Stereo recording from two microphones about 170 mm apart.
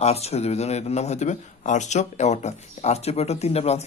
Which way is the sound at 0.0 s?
40° left (ahead or behind).